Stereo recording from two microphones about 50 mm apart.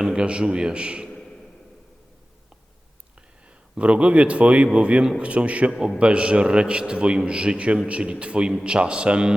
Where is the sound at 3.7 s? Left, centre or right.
Right.